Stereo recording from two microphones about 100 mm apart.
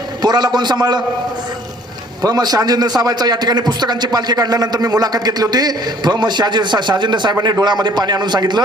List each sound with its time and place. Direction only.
0.2 s a man's voice: 45° right (ahead or behind)
2.2 s a man's voice: 40° right (ahead or behind)